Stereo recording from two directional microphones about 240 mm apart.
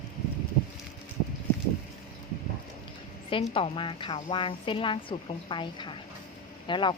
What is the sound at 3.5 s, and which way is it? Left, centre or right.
A woman's voice, left.